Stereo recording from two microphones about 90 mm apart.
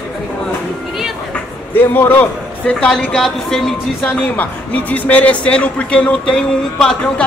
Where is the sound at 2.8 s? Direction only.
10° left (ahead or behind).